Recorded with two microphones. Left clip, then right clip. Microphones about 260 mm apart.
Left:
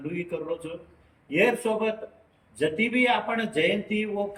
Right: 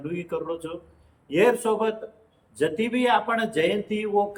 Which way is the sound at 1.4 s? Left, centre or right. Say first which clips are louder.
Right 3 dB; centre.